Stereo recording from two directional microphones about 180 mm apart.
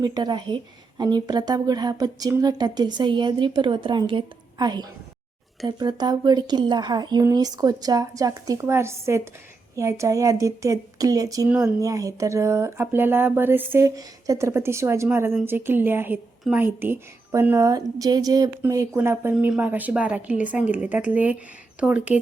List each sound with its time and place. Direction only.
0.0 s a woman's voice: 20° right (ahead or behind)